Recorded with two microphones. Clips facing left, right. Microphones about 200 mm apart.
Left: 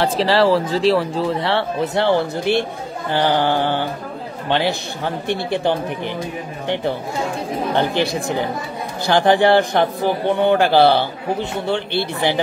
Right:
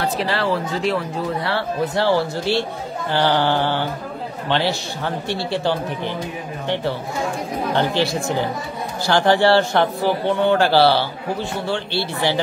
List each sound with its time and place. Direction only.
0.0 s a man's voice: 30° left (ahead or behind)